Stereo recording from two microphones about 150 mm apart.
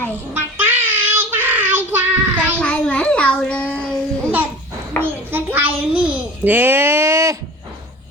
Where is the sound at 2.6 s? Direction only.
5° left (ahead or behind).